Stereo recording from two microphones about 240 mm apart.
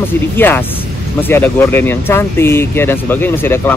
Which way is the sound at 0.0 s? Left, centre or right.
Centre.